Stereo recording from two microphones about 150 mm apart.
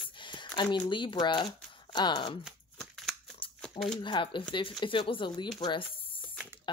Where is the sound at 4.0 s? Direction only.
35° left (ahead or behind).